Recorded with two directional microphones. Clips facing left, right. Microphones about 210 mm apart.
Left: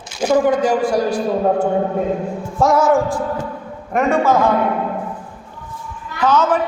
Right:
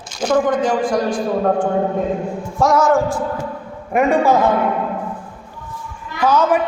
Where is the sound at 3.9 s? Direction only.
15° right (ahead or behind).